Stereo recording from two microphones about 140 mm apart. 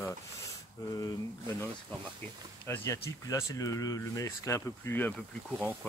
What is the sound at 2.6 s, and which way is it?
Speech, 20° left (ahead or behind).